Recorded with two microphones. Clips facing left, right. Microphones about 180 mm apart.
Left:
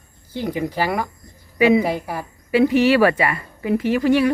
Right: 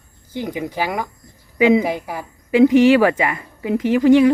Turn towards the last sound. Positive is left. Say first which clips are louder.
# right 5 dB
turn(degrees=-15)  # may be behind; listen again after turning